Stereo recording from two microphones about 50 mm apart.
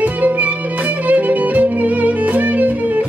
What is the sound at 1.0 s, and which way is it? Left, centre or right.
Violin, right.